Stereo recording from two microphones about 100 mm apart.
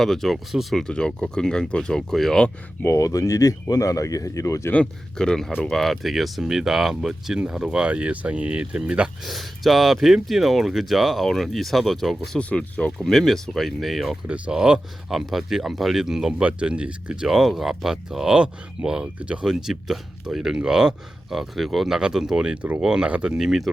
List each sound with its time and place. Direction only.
0.0 s speech: 5° left (ahead or behind)
2.8 s speech: 30° left (ahead or behind)
4.7 s speech: 10° left (ahead or behind)
14.3 s speech: 15° right (ahead or behind)